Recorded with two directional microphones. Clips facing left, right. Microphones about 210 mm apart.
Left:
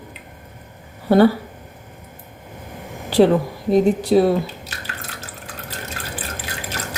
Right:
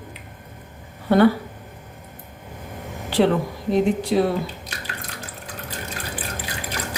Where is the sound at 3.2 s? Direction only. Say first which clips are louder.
Left 4 dB; 40° left (ahead or behind).